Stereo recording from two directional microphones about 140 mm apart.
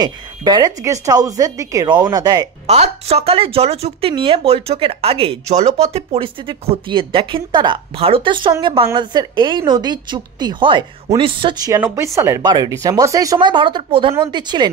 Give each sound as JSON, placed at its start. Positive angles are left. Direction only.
{"t": 0.0, "sound": "a woman's voice", "side_deg": -30}
{"t": 2.6, "sound": "a woman's voice", "side_deg": -50}
{"t": 4.1, "sound": "speech", "side_deg": -35}
{"t": 11.8, "sound": "a woman's voice", "side_deg": -20}